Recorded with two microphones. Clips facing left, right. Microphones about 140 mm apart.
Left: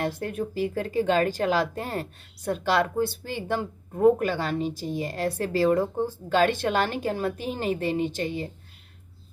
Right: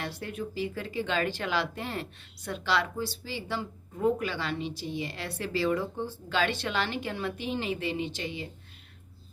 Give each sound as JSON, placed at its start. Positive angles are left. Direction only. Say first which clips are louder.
{"t": 0.0, "sound": "speech", "louder": "left 7 dB", "side_deg": 50}